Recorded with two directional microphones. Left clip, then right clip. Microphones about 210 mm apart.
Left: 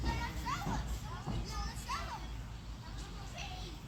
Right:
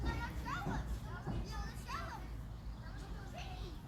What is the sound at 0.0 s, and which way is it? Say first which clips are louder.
Children playing: left 4 dB; 45° left (ahead or behind).